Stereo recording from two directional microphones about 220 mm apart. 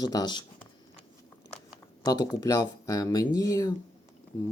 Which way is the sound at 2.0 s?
15° left (ahead or behind).